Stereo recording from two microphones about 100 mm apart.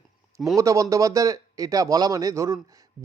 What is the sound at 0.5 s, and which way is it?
Speech, 35° right (ahead or behind).